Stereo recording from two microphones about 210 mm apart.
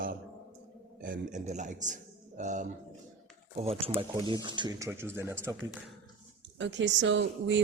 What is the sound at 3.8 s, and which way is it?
Speech, 25° right (ahead or behind).